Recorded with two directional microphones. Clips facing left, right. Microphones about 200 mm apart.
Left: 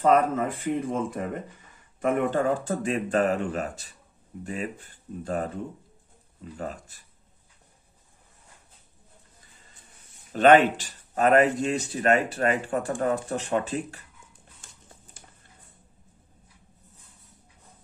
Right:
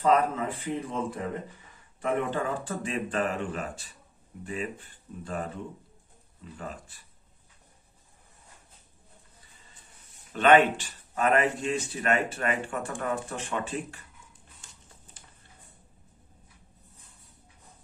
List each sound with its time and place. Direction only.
0.0 s speech: 45° left (ahead or behind)
6.5 s speech: 40° left (ahead or behind)
10.3 s speech: 40° left (ahead or behind)